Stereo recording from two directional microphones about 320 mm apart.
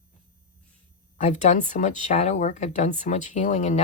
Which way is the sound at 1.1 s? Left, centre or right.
Left.